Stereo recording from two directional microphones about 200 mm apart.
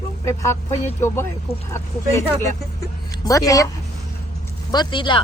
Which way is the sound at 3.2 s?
15° left (ahead or behind).